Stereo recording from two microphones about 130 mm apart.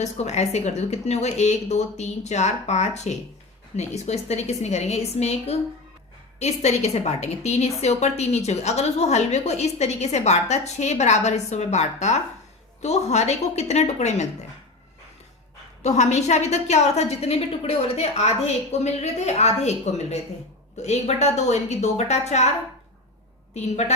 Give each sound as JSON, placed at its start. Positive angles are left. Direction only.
{"t": 0.0, "sound": "a woman's voice", "side_deg": 60}
{"t": 15.8, "sound": "a woman's voice", "side_deg": 60}